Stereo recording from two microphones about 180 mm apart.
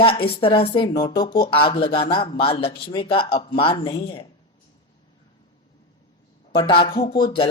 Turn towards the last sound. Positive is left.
turn(degrees=25)  # may be behind; listen again after turning